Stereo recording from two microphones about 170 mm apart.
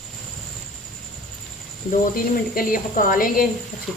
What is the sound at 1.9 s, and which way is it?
A woman's voice, 55° left (ahead or behind).